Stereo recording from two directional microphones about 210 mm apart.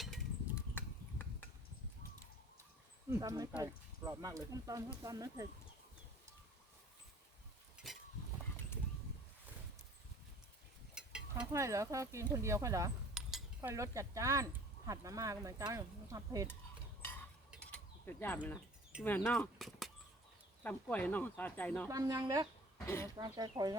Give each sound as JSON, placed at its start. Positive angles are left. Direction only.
{"t": 0.0, "sound": "a sound", "side_deg": 0}
{"t": 3.1, "sound": "speech", "side_deg": -15}
{"t": 10.9, "sound": "a sound", "side_deg": -5}
{"t": 11.5, "sound": "speech", "side_deg": -15}
{"t": 13.2, "sound": "cutlery", "side_deg": 0}
{"t": 13.6, "sound": "speech", "side_deg": -15}
{"t": 17.0, "sound": "a sound", "side_deg": 10}
{"t": 17.5, "sound": "pulleys", "side_deg": 5}
{"t": 19.0, "sound": "speech", "side_deg": 10}
{"t": 21.8, "sound": "speech", "side_deg": -15}